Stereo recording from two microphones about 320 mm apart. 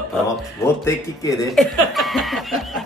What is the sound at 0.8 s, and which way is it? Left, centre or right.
Speech, centre.